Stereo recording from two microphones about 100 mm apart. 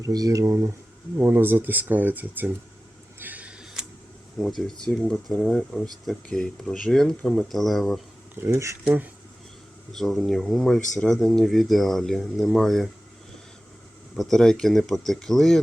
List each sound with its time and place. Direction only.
0.0 s speech: 35° right (ahead or behind)
1.2 s speech: 20° right (ahead or behind)
3.2 s a sound: 15° right (ahead or behind)
4.4 s speech: 5° left (ahead or behind)
8.4 s speech: 30° right (ahead or behind)
9.9 s speech: 5° left (ahead or behind)
14.2 s speech: 5° left (ahead or behind)